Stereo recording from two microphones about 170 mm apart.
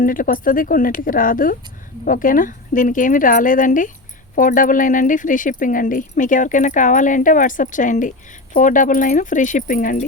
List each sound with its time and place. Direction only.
0.0 s speech: 55° left (ahead or behind)